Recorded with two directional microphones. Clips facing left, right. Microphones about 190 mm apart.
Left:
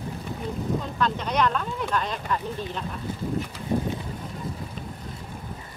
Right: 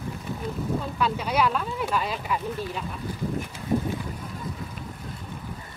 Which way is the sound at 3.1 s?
25° left (ahead or behind).